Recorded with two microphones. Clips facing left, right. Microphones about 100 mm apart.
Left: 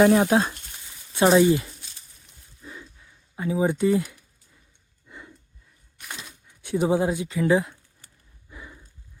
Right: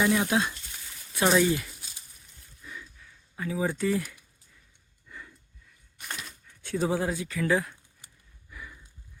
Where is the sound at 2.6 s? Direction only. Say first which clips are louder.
Left 2 dB; 30° left (ahead or behind).